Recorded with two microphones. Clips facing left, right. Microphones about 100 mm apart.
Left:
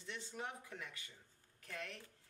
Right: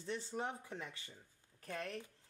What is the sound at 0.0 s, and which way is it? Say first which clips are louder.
Speech: right 6 dB; 35° right (ahead or behind).